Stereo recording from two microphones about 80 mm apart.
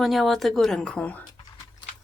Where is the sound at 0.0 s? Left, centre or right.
Centre.